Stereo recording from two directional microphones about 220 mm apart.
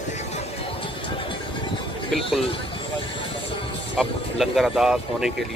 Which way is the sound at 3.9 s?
Centre (ahead or behind).